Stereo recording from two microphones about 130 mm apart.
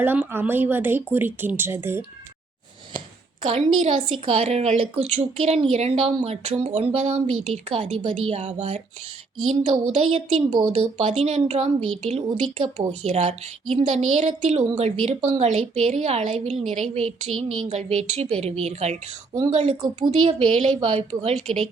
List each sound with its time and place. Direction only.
0.0 s speech: 15° right (ahead or behind)
3.4 s speech: 50° right (ahead or behind)
9.9 s speech: 50° right (ahead or behind)
10.8 s a woman's voice: 55° right (ahead or behind)
19.3 s speech: 30° right (ahead or behind)
20.1 s a woman's voice: 50° right (ahead or behind)